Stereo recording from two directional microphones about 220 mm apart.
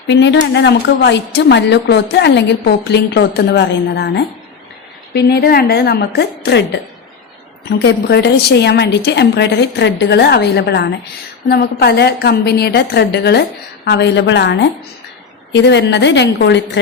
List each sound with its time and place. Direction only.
0.1 s a woman's voice: 55° left (ahead or behind)
7.7 s a woman's voice: 50° left (ahead or behind)